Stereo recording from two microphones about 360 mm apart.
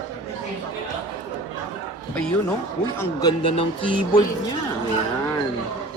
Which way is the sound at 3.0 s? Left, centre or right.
Centre.